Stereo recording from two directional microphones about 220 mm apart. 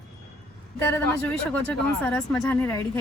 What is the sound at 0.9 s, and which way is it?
A woman's voice, 10° left (ahead or behind).